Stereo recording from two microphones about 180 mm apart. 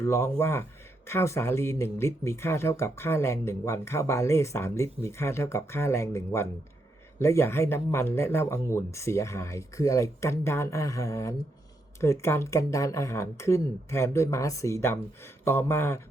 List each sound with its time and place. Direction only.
0.0 s speech: 15° left (ahead or behind)